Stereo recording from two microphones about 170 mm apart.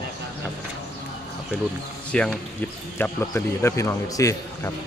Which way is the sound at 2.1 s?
5° left (ahead or behind).